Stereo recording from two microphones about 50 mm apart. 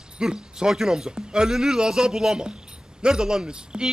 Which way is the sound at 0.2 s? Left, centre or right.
Centre.